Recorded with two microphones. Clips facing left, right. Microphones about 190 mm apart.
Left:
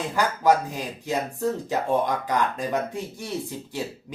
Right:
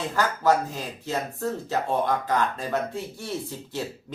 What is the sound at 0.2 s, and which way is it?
Speech, 15° left (ahead or behind).